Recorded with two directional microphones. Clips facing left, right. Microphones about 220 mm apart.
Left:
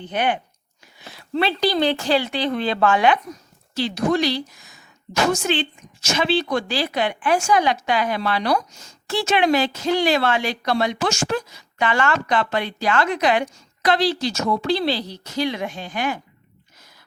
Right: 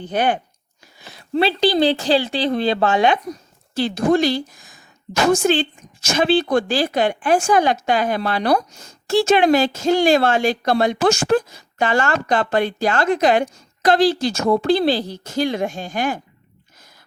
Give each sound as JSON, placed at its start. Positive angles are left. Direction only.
{"t": 0.0, "sound": "a woman's voice", "side_deg": -40}
{"t": 3.8, "sound": "a woman's voice", "side_deg": -50}